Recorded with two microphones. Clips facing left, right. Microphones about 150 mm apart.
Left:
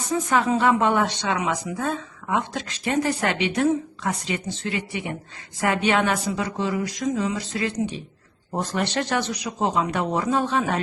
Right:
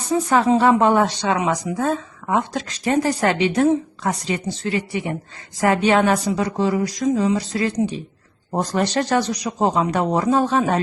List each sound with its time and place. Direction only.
0.1 s speech: 35° right (ahead or behind)